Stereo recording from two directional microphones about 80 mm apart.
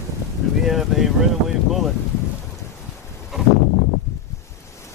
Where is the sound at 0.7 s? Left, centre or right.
Centre.